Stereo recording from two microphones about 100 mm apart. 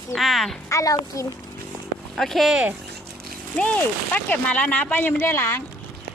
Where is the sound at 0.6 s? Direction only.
35° left (ahead or behind).